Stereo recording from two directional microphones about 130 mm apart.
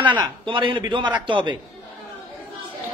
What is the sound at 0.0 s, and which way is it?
A man's voice, 35° right (ahead or behind).